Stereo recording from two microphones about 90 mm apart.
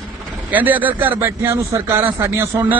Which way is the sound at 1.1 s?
35° right (ahead or behind).